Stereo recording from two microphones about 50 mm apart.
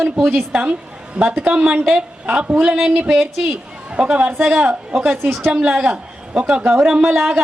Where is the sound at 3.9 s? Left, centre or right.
Right.